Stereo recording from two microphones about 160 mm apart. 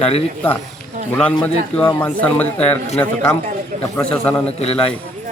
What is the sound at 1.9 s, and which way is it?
Speech, 10° left (ahead or behind).